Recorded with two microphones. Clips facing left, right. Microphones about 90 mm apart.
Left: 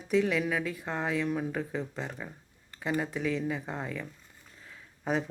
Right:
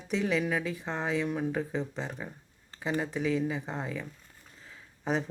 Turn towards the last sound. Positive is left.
turn(degrees=0)  # may be behind; listen again after turning